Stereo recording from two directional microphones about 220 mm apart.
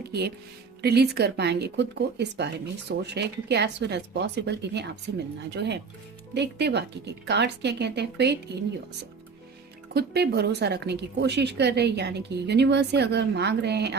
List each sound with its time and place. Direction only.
0.1 s a woman's voice: 50° right (ahead or behind)
9.9 s a woman's voice: 45° right (ahead or behind)